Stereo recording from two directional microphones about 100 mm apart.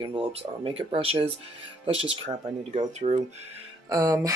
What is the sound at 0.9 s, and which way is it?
Speech, 65° right (ahead or behind).